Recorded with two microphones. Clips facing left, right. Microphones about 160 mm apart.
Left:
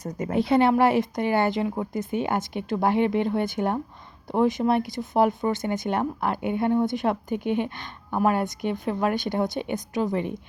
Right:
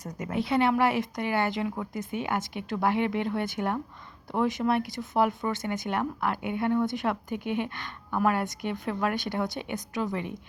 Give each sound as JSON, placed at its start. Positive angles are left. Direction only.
{"t": 0.3, "sound": "speech", "side_deg": 35}